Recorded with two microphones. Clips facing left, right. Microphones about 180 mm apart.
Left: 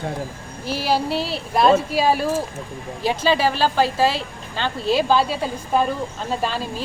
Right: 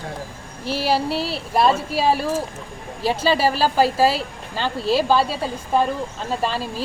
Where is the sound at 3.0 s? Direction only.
35° right (ahead or behind).